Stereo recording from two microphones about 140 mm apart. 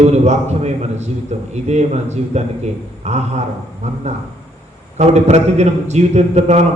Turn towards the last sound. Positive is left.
turn(degrees=-50)  # may be behind; listen again after turning